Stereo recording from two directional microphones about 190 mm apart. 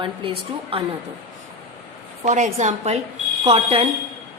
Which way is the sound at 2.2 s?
40° right (ahead or behind).